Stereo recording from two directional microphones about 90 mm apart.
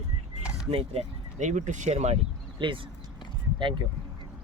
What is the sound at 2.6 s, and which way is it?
Speech, 70° right (ahead or behind).